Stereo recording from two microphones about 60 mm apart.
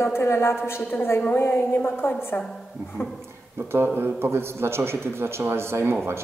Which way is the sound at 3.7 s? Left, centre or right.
Right.